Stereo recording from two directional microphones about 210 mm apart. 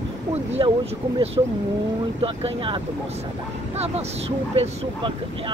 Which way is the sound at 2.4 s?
25° right (ahead or behind).